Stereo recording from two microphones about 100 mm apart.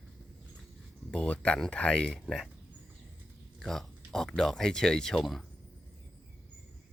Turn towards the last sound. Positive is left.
turn(degrees=0)  # may be behind; listen again after turning